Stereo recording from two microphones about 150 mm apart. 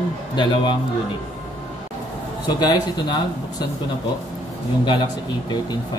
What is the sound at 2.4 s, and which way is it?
A man's voice, 30° left (ahead or behind).